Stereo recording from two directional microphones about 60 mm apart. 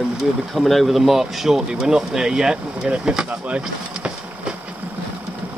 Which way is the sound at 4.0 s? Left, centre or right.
Centre.